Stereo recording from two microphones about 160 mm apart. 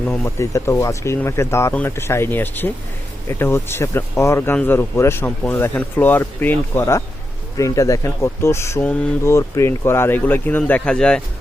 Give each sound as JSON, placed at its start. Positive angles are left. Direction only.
{"t": 0.3, "sound": "speech", "side_deg": 20}